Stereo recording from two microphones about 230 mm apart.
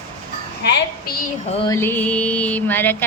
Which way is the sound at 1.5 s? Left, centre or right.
Left.